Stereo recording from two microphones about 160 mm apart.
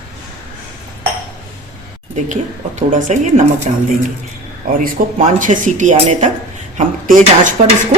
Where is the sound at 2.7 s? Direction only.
50° right (ahead or behind).